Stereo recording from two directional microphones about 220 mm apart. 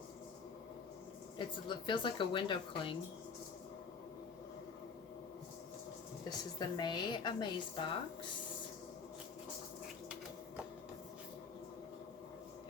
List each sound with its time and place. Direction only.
1.4 s a woman's voice: 20° left (ahead or behind)
6.6 s a woman's voice: 20° left (ahead or behind)